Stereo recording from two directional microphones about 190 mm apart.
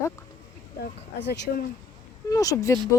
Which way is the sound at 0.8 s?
65° left (ahead or behind).